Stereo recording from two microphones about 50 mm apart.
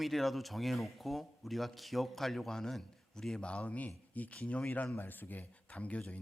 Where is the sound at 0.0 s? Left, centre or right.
Centre; by 5.5 s left.